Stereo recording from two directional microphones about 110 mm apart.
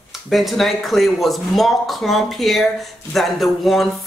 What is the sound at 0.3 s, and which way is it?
Speech, centre (ahead or behind).